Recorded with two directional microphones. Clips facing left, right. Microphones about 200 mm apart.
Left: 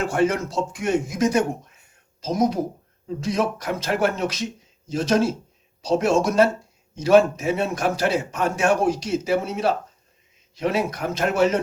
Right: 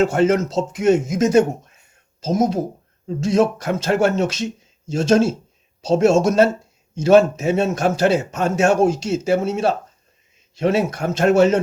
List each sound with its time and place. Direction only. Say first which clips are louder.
0.0 s a man's voice: right 5 dB; 20° right (ahead or behind)